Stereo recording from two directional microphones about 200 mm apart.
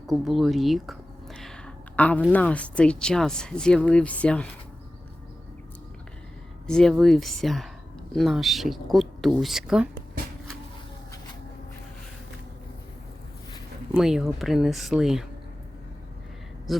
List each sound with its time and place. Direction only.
0.1 s speech: centre (ahead or behind)
6.7 s speech: 5° left (ahead or behind)
13.9 s speech: centre (ahead or behind)
16.7 s speech: centre (ahead or behind)